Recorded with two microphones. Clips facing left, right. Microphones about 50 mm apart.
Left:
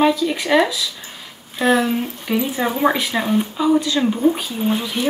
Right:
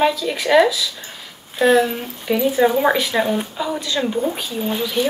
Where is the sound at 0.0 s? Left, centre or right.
Centre.